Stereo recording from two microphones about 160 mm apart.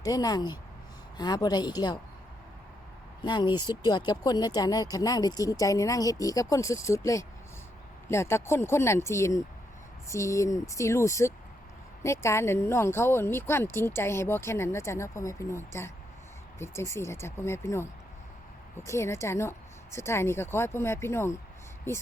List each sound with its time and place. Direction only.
0.0 s speech: 25° left (ahead or behind)
3.2 s speech: 30° left (ahead or behind)